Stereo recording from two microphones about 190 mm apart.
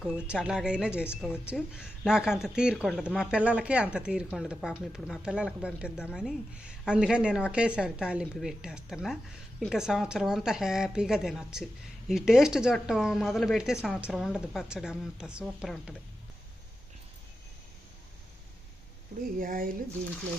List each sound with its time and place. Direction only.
0.3 s speech: 5° right (ahead or behind)
19.4 s speech: 50° right (ahead or behind)